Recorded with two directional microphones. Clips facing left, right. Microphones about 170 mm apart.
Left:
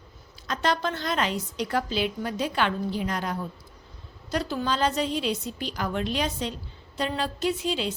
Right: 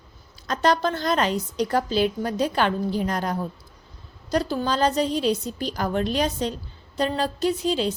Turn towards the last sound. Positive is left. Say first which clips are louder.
# right 4 dB
turn(degrees=-40)  # may be behind; listen again after turning